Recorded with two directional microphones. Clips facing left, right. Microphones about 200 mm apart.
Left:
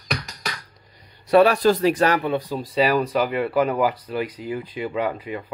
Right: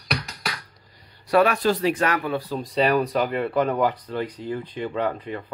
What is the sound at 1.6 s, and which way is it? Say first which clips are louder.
Speech: left 4 dB; 40° left (ahead or behind).